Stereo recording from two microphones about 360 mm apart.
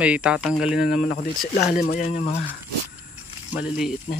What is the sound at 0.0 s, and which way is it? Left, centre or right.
Speech, centre.